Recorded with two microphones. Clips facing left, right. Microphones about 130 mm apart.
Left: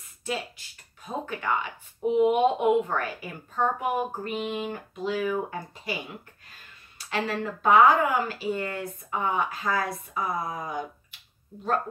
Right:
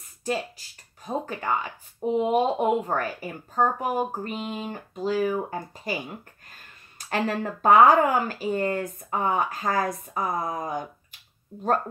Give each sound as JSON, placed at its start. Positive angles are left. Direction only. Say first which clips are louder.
{"t": 0.2, "sound": "a woman's voice", "louder": "right 4 dB", "side_deg": -40}
{"t": 7.1, "sound": "speech", "louder": "right 2 dB", "side_deg": -45}